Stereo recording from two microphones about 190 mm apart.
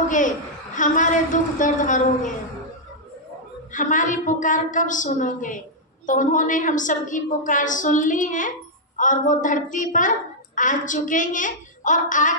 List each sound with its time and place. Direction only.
0.7 s a woman's voice: 40° left (ahead or behind)
3.7 s a woman's voice: 40° left (ahead or behind)